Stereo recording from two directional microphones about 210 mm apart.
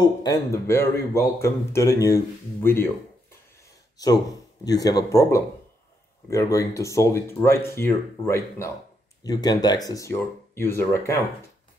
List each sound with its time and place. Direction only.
0.0 s speech: 20° left (ahead or behind)
4.6 s speech: 15° left (ahead or behind)